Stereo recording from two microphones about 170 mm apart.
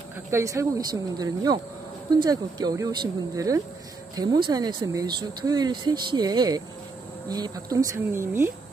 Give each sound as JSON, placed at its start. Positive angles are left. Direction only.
{"t": 0.3, "sound": "speech", "side_deg": -15}